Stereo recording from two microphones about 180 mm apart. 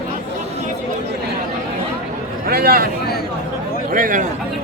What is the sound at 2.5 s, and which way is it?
Speech, 55° right (ahead or behind).